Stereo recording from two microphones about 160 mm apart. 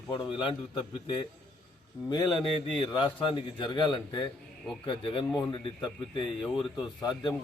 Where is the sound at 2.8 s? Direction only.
30° left (ahead or behind).